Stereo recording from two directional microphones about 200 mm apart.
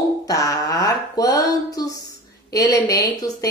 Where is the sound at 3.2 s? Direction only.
15° left (ahead or behind).